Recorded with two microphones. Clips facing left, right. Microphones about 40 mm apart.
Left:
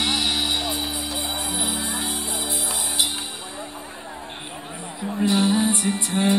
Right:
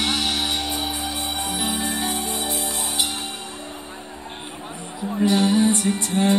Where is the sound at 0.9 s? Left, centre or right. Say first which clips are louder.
Right 1 dB; right.